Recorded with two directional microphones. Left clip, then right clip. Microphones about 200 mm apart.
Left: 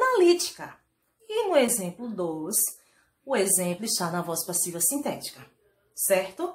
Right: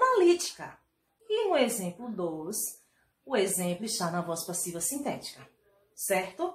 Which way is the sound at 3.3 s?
35° left (ahead or behind).